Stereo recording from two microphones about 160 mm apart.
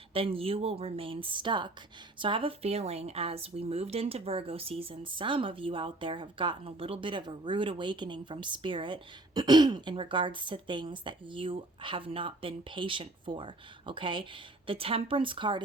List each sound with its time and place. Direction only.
0.1 s speech: 35° right (ahead or behind)